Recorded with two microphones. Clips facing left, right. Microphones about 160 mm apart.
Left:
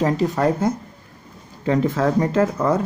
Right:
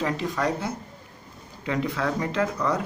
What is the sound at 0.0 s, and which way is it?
Speech, 40° left (ahead or behind).